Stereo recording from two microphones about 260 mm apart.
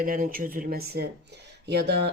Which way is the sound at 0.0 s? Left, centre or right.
Right.